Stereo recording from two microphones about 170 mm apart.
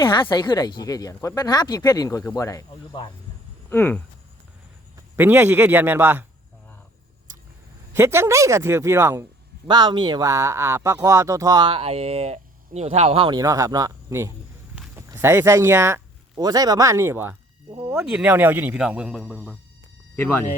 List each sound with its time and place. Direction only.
0.0 s speech: 25° left (ahead or behind)
3.7 s speech: 10° left (ahead or behind)
4.9 s a man's voice: 15° right (ahead or behind)
7.9 s a man's voice: 15° right (ahead or behind)
9.6 s speech: 25° right (ahead or behind)
17.7 s a sound: 20° right (ahead or behind)
17.9 s a man's voice: 5° right (ahead or behind); by 20.5 s 10° left (ahead or behind)